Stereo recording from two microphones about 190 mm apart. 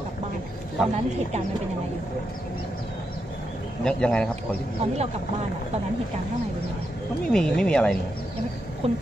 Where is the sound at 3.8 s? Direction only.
5° left (ahead or behind).